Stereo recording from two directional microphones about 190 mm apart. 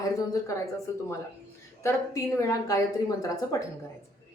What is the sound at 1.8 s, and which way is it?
A woman's voice, 15° left (ahead or behind).